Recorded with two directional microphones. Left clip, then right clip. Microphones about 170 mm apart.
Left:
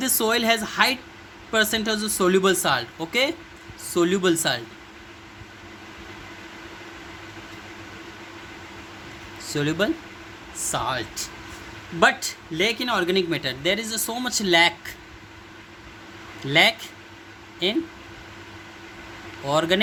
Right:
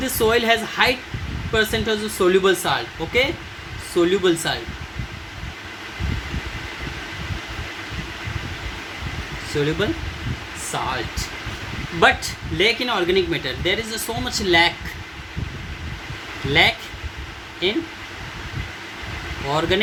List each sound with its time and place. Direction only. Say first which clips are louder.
0.0 s speech: right 4 dB; 55° left (ahead or behind)
9.5 s speech: right 2 dB; 60° left (ahead or behind)
11.9 s speech: right 3 dB; 40° left (ahead or behind); by 14.7 s 55° left (ahead or behind)
16.5 s speech: right 1 dB; 60° left (ahead or behind)
19.5 s speech: even; 60° left (ahead or behind)